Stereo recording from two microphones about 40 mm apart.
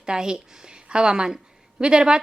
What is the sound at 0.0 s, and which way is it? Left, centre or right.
A woman's voice, centre.